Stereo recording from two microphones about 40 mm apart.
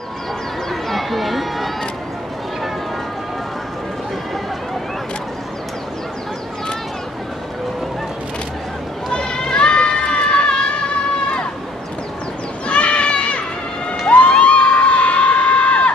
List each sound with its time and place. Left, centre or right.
0.8 s run: centre
9.1 s run: centre
12.6 s a sound: left
14.0 s crowd: left